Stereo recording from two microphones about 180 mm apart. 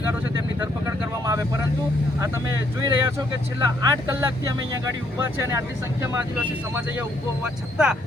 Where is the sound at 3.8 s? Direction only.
15° right (ahead or behind).